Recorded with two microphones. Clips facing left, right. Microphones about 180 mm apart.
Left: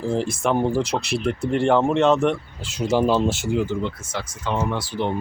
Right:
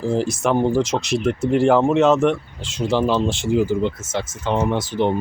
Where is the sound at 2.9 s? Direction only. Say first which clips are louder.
Even; 10° left (ahead or behind).